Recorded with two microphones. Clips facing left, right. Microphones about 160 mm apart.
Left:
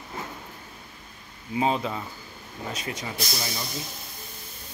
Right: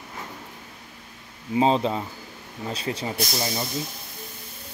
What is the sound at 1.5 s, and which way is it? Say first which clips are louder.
Speech: right 5 dB; 30° right (ahead or behind).